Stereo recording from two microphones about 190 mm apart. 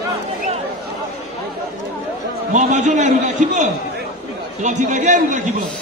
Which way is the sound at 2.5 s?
40° right (ahead or behind).